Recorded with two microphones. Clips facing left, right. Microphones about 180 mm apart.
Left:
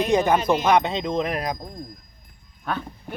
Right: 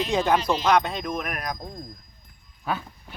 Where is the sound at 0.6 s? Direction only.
20° left (ahead or behind).